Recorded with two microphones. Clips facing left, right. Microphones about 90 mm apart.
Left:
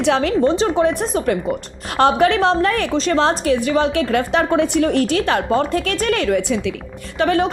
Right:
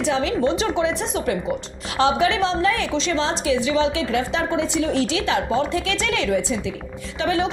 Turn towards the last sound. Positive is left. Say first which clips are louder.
# left 5 dB
turn(degrees=55)  # may be behind; listen again after turning